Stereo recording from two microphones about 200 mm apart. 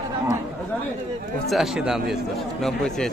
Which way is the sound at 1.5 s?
Centre (ahead or behind).